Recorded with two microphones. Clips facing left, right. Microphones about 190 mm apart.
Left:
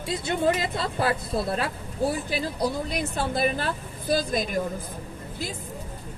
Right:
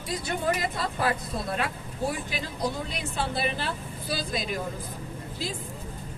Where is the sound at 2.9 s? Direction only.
45° left (ahead or behind).